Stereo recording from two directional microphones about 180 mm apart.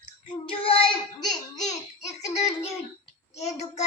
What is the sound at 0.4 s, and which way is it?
Child singing, 30° left (ahead or behind).